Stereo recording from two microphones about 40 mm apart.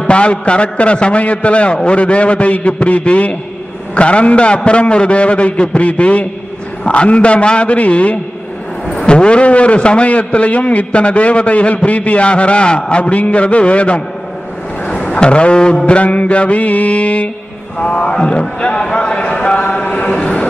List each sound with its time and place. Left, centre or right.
0.0 s a man's voice: left
9.0 s a man's voice: left
15.0 s a man's voice: left